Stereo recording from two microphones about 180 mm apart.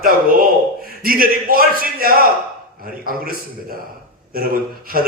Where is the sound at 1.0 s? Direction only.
55° right (ahead or behind).